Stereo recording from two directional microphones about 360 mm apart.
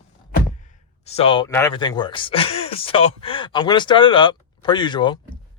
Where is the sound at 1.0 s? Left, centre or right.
Centre.